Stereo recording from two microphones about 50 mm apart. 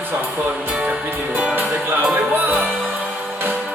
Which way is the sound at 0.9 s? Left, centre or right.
Right.